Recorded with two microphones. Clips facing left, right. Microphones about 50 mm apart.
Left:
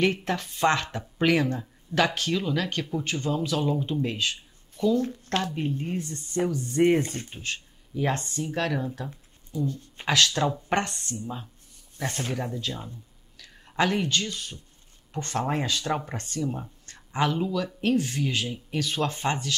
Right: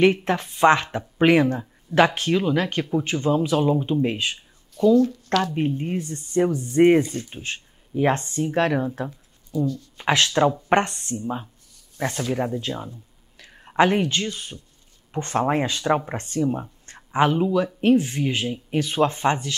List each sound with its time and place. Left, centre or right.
0.0 s speech: right
4.9 s speech: left
5.4 s speech: right
7.0 s speech: left
7.2 s speech: right
9.7 s speech: left
10.0 s speech: right
16.8 s a sound: right
17.7 s speech: right